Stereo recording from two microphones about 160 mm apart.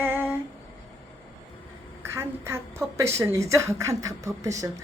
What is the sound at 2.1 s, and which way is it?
A woman's voice, 15° right (ahead or behind).